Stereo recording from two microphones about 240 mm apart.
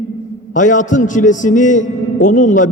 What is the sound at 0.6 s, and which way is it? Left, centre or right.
A man's voice, left.